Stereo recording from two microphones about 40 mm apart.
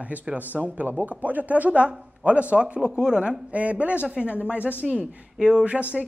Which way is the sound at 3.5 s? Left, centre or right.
Right.